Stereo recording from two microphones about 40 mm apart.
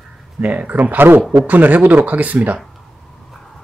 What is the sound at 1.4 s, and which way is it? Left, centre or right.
Speech, right.